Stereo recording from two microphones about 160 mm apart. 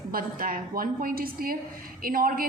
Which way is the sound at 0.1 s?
60° right (ahead or behind).